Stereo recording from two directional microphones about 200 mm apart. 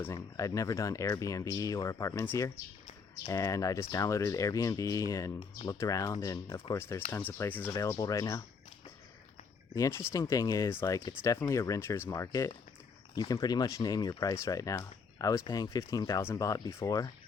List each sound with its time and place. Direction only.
0.0 s speech: 15° left (ahead or behind)
10.1 s speech: 15° left (ahead or behind)